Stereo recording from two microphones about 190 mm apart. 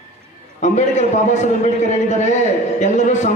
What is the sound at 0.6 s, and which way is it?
A man's voice, 40° left (ahead or behind).